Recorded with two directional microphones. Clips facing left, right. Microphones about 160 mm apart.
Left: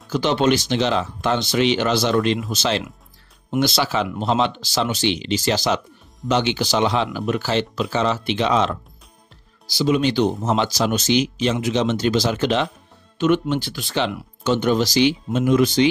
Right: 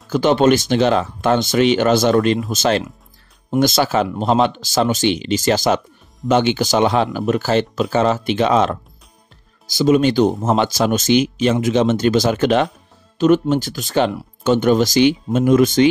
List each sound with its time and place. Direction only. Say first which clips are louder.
0.1 s speech: right 5 dB; 50° right (ahead or behind)